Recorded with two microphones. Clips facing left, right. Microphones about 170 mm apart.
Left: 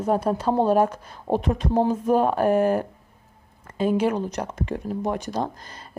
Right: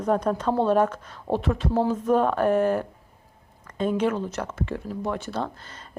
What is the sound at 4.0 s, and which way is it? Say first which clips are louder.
Speech: left 2 dB; 10° left (ahead or behind).